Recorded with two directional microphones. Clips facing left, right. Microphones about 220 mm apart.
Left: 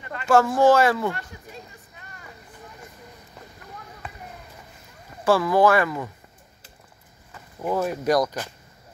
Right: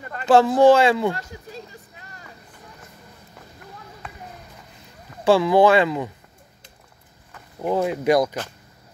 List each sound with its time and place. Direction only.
0.0 s speech: 40° right (ahead or behind); by 1.1 s 25° right (ahead or behind)
5.2 s speech: 25° right (ahead or behind)
7.6 s speech: 20° right (ahead or behind)